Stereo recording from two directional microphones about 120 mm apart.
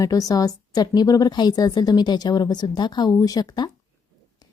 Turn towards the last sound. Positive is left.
turn(degrees=35)  # may be behind; listen again after turning